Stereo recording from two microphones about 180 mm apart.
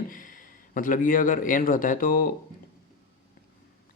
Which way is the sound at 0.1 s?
50° left (ahead or behind).